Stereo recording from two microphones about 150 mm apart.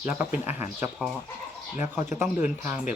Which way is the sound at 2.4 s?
55° left (ahead or behind).